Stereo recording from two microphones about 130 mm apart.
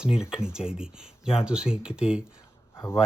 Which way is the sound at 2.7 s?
30° left (ahead or behind).